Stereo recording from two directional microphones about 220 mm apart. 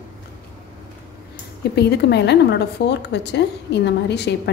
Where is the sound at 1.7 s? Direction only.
50° left (ahead or behind).